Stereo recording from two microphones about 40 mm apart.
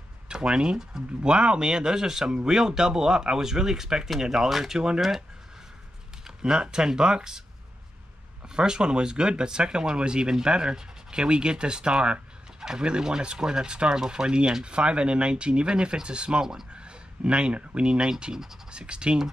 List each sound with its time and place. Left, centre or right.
0.3 s speech: right
6.2 s speech: centre
8.5 s speech: right
18.2 s speech: centre
18.7 s speech: right